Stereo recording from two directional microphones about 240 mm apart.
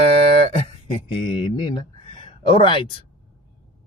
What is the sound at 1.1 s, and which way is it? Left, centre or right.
Speech, centre.